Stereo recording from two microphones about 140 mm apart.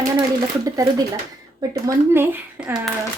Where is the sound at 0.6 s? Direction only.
25° right (ahead or behind).